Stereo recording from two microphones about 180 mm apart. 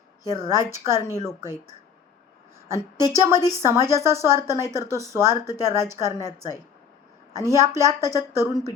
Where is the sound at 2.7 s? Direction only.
20° left (ahead or behind).